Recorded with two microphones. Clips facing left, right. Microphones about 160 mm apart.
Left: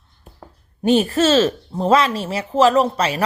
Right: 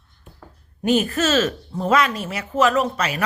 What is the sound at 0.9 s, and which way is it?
Speech, 30° left (ahead or behind).